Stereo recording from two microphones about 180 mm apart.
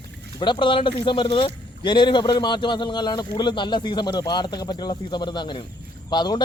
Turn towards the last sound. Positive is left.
turn(degrees=25)  # may be behind; listen again after turning